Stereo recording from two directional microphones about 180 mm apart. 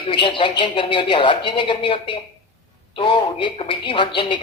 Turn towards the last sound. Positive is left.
turn(degrees=25)  # may be behind; listen again after turning